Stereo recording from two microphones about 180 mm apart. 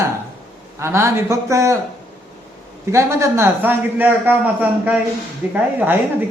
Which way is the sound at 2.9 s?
15° right (ahead or behind).